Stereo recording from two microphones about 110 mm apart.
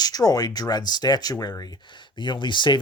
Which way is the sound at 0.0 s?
35° left (ahead or behind).